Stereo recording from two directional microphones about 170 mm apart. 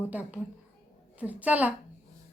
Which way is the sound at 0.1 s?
10° right (ahead or behind).